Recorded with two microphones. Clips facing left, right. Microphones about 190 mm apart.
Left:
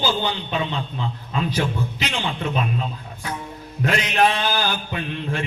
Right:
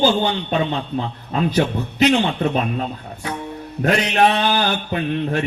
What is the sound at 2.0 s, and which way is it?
Mantra, 40° right (ahead or behind).